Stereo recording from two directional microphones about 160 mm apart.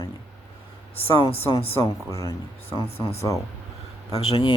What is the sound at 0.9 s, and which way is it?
Speech, 35° left (ahead or behind).